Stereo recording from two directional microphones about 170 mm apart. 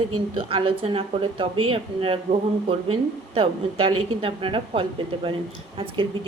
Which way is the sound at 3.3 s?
35° right (ahead or behind).